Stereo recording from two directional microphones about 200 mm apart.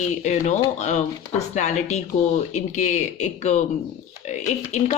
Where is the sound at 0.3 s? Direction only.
35° left (ahead or behind).